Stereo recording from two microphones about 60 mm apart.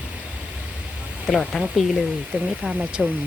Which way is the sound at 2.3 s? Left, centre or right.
Right.